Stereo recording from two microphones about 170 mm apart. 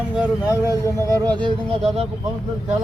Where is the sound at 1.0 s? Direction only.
15° left (ahead or behind).